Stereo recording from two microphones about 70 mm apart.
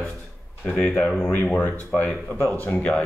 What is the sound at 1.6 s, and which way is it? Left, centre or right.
Speech, left.